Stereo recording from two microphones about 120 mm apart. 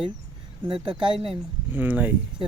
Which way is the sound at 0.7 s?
45° right (ahead or behind).